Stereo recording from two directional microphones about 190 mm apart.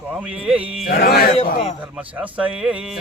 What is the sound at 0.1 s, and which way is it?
Speech, 5° right (ahead or behind).